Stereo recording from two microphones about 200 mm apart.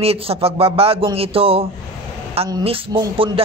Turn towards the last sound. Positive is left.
turn(degrees=-25)  # may be behind; listen again after turning